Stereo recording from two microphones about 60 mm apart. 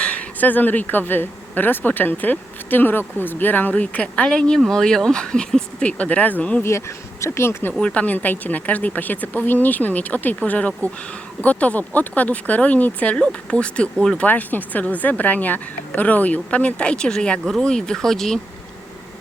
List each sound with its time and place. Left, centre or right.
0.0 s speech: left
6.6 s speech: left
7.8 s a woman's voice: centre
14.3 s a woman's voice: left; by 18.3 s centre